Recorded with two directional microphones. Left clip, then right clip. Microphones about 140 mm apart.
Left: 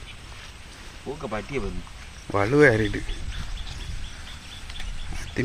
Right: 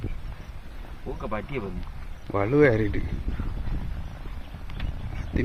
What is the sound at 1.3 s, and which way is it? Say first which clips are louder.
Speech: left 1 dB; centre (ahead or behind).